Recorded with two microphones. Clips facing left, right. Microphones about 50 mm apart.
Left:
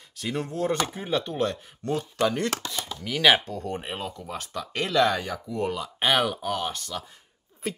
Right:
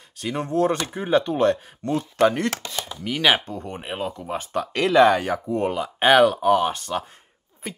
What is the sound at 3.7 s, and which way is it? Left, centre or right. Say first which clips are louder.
Speech: right 1 dB; centre.